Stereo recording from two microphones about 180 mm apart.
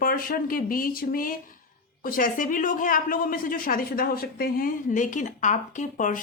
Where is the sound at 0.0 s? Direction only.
50° left (ahead or behind).